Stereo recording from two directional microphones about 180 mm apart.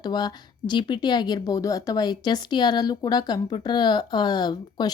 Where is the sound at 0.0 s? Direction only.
20° left (ahead or behind).